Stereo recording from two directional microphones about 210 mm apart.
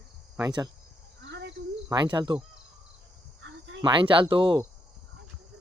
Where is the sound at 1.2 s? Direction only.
55° right (ahead or behind).